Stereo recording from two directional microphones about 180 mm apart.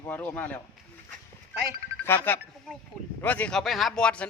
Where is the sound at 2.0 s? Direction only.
10° left (ahead or behind).